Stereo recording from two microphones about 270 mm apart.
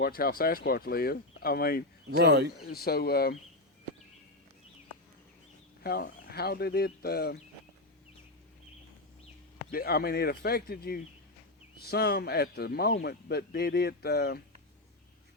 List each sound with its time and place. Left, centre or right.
0.0 s speech: left
2.0 s speech: right
2.6 s speech: left
5.8 s speech: left
9.7 s speech: left